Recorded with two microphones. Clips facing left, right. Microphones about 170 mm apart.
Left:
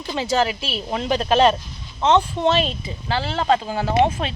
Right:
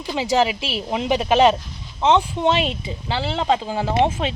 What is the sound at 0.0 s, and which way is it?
Speech, 10° right (ahead or behind).